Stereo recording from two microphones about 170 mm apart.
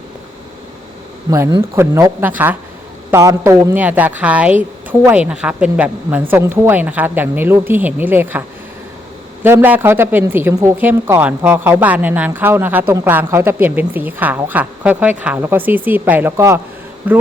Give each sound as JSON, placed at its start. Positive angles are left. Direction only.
{"t": 1.3, "sound": "a woman's voice", "side_deg": -20}